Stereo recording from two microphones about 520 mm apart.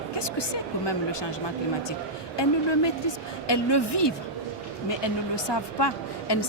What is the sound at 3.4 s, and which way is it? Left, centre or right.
A woman's voice, left.